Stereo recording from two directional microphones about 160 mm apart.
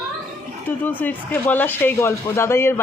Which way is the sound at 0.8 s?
10° left (ahead or behind).